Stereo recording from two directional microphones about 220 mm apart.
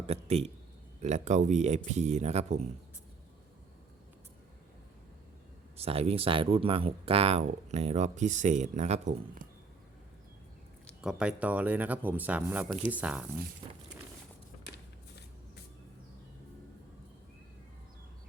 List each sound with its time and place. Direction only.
0.1 s speech: 30° right (ahead or behind)
5.7 s speech: 25° right (ahead or behind)
11.0 s speech: 5° right (ahead or behind)
13.6 s speech: 20° right (ahead or behind)